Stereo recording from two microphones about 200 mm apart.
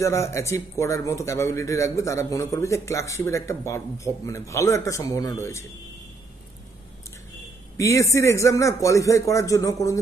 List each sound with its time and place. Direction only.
0.0 s a man's voice: 15° left (ahead or behind)
7.7 s a man's voice: 15° left (ahead or behind)